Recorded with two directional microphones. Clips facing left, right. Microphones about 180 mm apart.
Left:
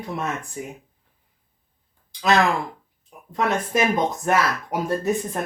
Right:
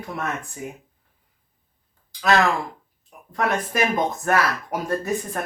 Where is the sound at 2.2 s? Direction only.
20° left (ahead or behind).